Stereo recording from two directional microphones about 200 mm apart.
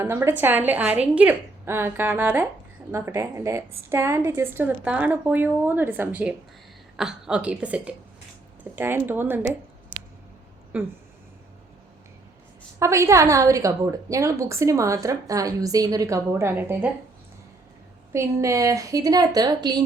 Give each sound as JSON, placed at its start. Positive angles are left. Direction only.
{"t": 0.0, "sound": "a woman's voice", "side_deg": -10}
{"t": 10.7, "sound": "a woman's voice", "side_deg": -10}
{"t": 12.8, "sound": "a woman's voice", "side_deg": -15}
{"t": 18.1, "sound": "a woman's voice", "side_deg": -15}